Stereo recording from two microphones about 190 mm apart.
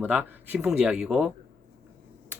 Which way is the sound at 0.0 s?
10° right (ahead or behind).